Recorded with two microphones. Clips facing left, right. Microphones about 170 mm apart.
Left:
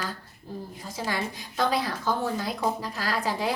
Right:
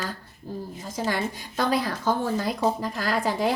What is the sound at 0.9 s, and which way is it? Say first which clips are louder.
A woman's voice: right 3 dB; 50° right (ahead or behind).